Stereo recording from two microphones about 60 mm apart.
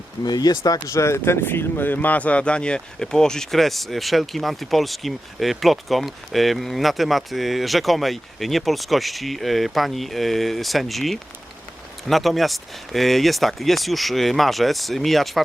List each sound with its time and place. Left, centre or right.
0.3 s speech: left; by 15.4 s centre